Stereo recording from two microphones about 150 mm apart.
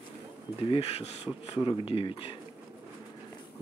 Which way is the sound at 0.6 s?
40° left (ahead or behind).